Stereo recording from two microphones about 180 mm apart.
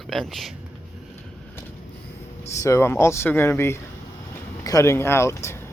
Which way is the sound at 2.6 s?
15° left (ahead or behind).